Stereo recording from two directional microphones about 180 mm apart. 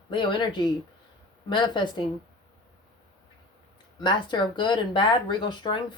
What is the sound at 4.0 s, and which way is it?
Speech, 25° left (ahead or behind).